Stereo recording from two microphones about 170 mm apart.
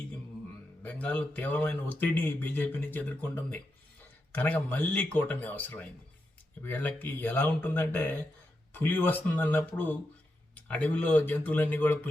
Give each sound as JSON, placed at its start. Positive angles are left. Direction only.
{"t": 0.8, "sound": "speech", "side_deg": 10}